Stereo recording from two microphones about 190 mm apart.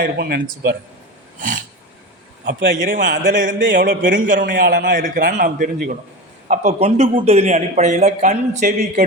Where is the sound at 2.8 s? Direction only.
45° right (ahead or behind).